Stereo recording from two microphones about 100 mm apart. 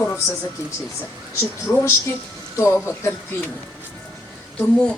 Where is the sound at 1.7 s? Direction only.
30° left (ahead or behind).